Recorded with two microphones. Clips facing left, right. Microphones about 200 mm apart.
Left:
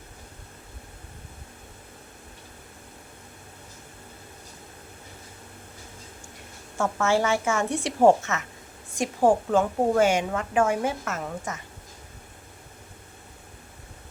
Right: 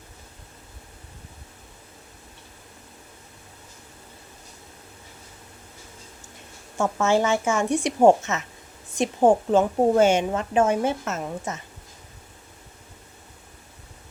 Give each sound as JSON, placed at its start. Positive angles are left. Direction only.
{"t": 6.7, "sound": "a woman's voice", "side_deg": -20}